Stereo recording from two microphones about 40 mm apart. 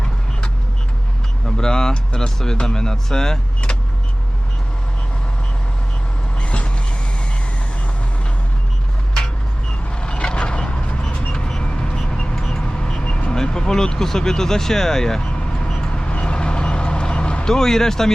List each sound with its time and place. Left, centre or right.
1.5 s a man's voice: centre
6.4 s vehicle: left
10.0 s vehicle: left
12.7 s speech: left
15.8 s vehicle: left